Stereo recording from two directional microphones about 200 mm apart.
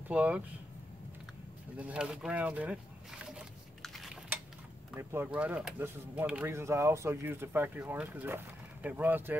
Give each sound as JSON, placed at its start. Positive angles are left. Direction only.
{"t": 0.1, "sound": "speech", "side_deg": -5}
{"t": 1.8, "sound": "speech", "side_deg": -5}
{"t": 3.3, "sound": "a sound", "side_deg": 0}
{"t": 4.9, "sound": "speech", "side_deg": -10}